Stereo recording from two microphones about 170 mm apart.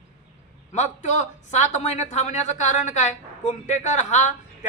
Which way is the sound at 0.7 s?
45° left (ahead or behind).